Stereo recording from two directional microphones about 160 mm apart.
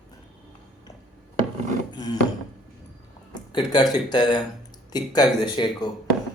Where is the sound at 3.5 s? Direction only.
25° left (ahead or behind).